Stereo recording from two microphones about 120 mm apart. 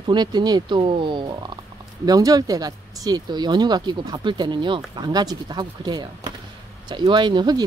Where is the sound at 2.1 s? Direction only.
30° right (ahead or behind).